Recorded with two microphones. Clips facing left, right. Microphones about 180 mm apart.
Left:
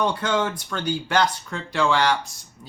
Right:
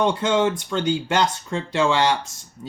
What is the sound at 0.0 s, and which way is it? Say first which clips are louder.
Speech: right 4 dB; 20° right (ahead or behind).